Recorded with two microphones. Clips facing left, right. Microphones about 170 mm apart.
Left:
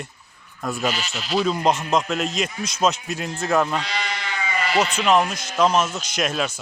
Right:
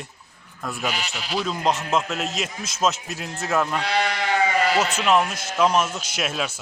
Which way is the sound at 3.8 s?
55° right (ahead or behind).